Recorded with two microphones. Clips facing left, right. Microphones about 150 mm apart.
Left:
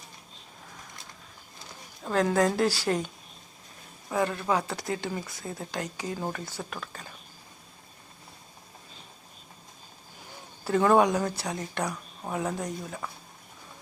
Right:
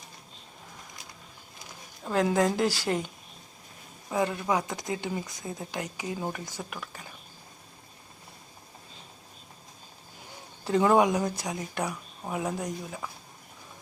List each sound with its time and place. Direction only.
2.1 s speech: 10° right (ahead or behind)
4.1 s speech: 15° right (ahead or behind)
10.6 s speech: 20° right (ahead or behind)